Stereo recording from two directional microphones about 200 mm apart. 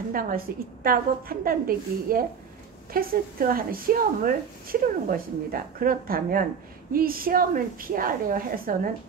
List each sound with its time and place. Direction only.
0.1 s speech: 45° right (ahead or behind)